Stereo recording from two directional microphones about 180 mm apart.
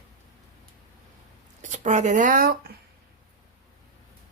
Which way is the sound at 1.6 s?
45° right (ahead or behind).